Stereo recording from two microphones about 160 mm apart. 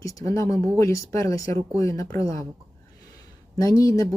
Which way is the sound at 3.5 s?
20° left (ahead or behind).